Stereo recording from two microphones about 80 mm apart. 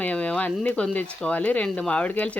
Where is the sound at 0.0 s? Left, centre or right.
Centre.